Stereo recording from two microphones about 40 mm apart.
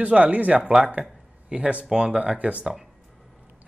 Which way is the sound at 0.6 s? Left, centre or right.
Right.